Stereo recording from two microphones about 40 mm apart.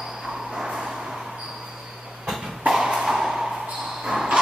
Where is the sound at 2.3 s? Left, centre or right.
Centre.